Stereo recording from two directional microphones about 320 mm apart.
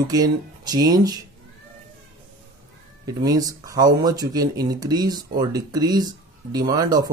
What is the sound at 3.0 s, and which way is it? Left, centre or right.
Speech, centre.